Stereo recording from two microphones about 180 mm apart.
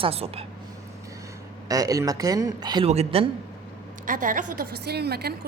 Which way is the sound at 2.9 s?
35° right (ahead or behind).